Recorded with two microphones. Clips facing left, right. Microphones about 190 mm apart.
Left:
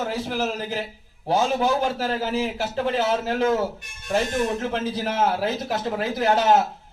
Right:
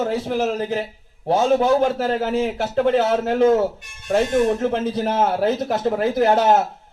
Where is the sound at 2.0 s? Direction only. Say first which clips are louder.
Right 4 dB; 50° right (ahead or behind).